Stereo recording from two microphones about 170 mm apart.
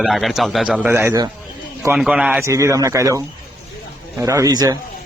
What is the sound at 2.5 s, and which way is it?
A man's voice, 20° right (ahead or behind).